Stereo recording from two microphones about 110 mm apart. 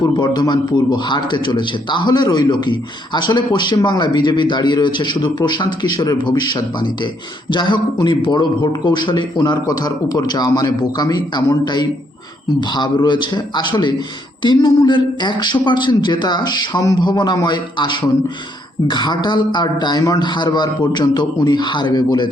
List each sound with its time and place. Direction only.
0.0 s a man's voice: 40° left (ahead or behind)